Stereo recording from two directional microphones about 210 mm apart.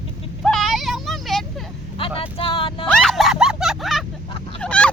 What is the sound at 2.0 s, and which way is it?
Speech, 25° left (ahead or behind).